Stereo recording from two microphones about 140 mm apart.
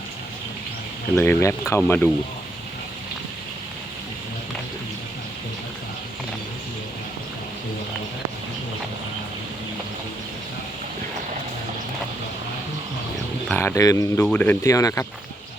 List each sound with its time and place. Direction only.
1.1 s speech: 15° left (ahead or behind)
13.6 s speech: 20° left (ahead or behind)
14.3 s speech: 10° left (ahead or behind)